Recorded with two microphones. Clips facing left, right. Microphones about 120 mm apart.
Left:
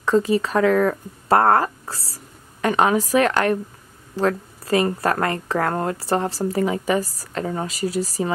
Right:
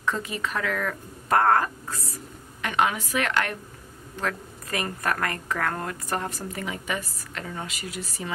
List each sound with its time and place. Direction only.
0.0 s a woman's voice: 35° left (ahead or behind)